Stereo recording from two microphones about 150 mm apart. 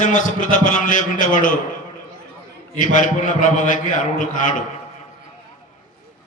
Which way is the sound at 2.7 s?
60° left (ahead or behind).